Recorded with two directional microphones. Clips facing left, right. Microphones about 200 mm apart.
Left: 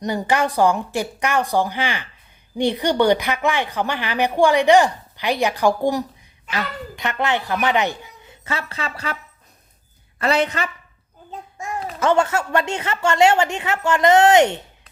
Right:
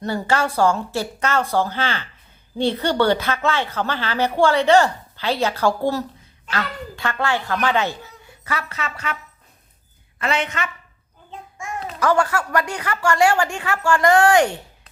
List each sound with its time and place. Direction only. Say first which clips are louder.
0.0 s speech: left 1 dB; 15° left (ahead or behind); by 9.1 s 30° left (ahead or behind)
10.2 s a woman's voice: left 4 dB; 35° left (ahead or behind)
11.3 s a sound: left 2 dB; 40° left (ahead or behind)
11.9 s a woman's voice: left 1 dB; 25° left (ahead or behind)